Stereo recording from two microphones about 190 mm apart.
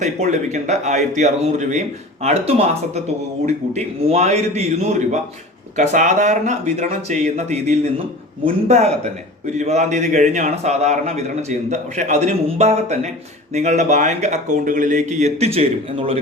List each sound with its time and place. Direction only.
0.0 s a man's voice: 35° right (ahead or behind)